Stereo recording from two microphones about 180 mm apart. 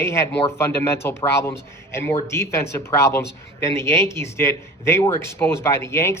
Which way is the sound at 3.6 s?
15° left (ahead or behind).